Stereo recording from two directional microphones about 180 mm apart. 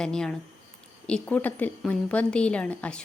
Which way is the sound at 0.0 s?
5° left (ahead or behind).